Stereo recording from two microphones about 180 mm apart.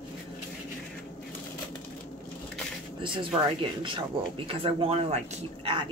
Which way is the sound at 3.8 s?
30° right (ahead or behind).